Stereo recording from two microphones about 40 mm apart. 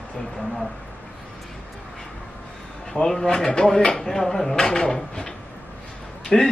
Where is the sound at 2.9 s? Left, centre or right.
Centre.